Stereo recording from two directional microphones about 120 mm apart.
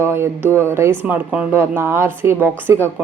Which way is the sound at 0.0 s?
20° right (ahead or behind).